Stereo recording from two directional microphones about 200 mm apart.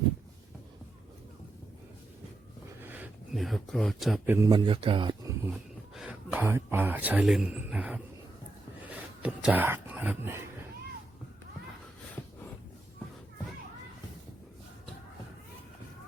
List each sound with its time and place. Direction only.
2.8 s speech: 10° right (ahead or behind)
4.3 s speech: 15° right (ahead or behind)
5.4 s speech: 5° right (ahead or behind)
9.2 s speech: 10° right (ahead or behind)